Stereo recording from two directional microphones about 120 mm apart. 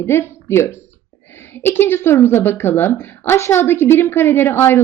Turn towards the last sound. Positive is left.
turn(degrees=20)  # may be behind; listen again after turning